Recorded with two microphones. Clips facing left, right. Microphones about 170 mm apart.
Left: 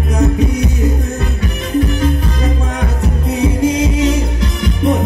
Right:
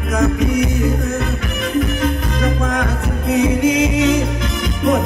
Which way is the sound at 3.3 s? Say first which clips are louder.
Even; 35° left (ahead or behind).